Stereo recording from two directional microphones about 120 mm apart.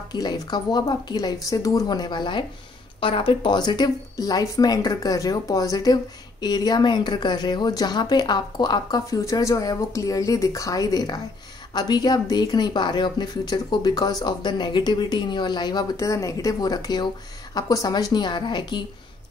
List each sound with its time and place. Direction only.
0.1 s a woman's voice: 35° left (ahead or behind)